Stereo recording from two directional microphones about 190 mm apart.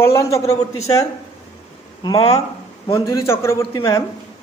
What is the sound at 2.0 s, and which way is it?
Speech, 25° left (ahead or behind).